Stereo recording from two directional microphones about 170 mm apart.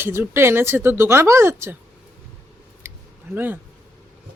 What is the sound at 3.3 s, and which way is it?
Speech, 10° right (ahead or behind).